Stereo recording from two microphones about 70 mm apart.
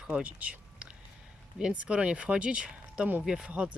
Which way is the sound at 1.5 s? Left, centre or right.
Centre.